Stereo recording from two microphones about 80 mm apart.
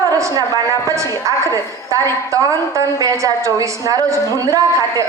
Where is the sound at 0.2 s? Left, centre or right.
Right.